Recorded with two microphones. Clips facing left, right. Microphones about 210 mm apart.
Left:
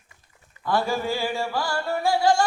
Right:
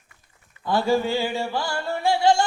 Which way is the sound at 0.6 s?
25° right (ahead or behind).